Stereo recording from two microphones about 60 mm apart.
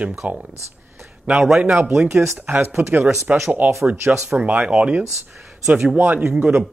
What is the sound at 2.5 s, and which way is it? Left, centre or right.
Speech, right.